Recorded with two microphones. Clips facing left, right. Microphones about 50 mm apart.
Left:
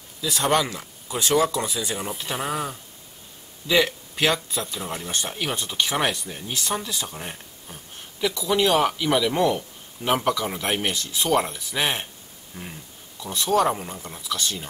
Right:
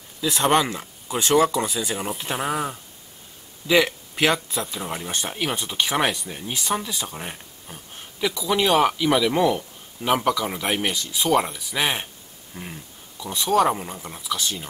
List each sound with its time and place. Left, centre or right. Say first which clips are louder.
0.2 s speech: right 2 dB; right
4.2 s speech: right 2 dB; right
4.6 s speech: right 1 dB; centre
13.3 s speech: right 1 dB; centre